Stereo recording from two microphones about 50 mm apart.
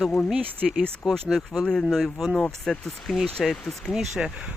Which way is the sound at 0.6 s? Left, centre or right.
Centre.